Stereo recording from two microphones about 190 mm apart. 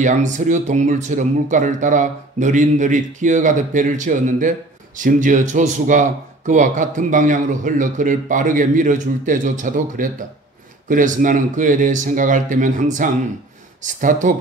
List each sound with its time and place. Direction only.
0.0 s speech: 40° right (ahead or behind)
14.2 s speech: 45° right (ahead or behind)